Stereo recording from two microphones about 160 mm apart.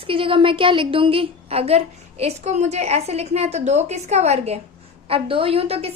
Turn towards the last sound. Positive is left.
turn(degrees=-40)  # may be behind; listen again after turning